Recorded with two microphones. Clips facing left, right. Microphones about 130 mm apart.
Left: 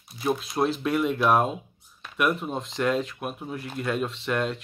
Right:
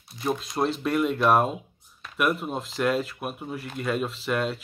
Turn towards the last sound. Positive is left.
turn(degrees=0)  # may be behind; listen again after turning